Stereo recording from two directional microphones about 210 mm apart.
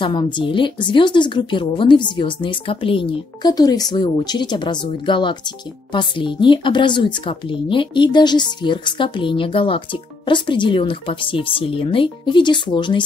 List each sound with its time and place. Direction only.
0.0 s a woman's voice: 25° left (ahead or behind)